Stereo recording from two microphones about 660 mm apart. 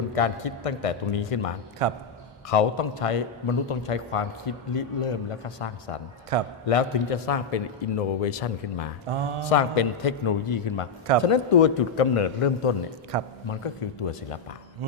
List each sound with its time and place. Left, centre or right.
0.2 s a man's voice: left
1.8 s mantra: right
2.5 s a man's voice: left
6.3 s a man's voice: right
6.7 s a man's voice: left
9.0 s mantra: right
9.5 s a man's voice: left
13.1 s mantra: right
13.5 s a man's voice: left